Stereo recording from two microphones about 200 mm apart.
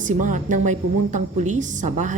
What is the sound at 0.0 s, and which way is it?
A woman's voice, 40° right (ahead or behind).